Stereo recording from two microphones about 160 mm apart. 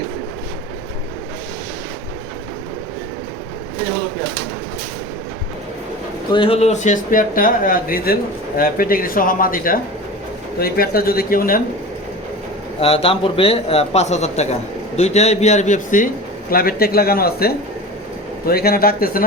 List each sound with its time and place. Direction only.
6.3 s speech: 35° left (ahead or behind); by 11.6 s 65° left (ahead or behind)
12.8 s a man's voice: 35° left (ahead or behind)
16.5 s speech: 65° left (ahead or behind)